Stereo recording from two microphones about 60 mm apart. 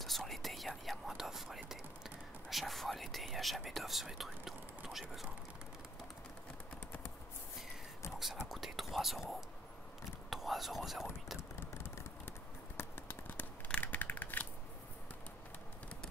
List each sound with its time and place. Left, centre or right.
0.0 s whispering: centre
8.2 s speech: centre
11.6 s a sound: left
13.7 s scissors: left